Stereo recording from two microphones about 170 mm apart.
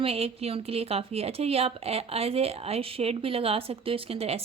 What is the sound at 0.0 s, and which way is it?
A woman's voice, 35° right (ahead or behind).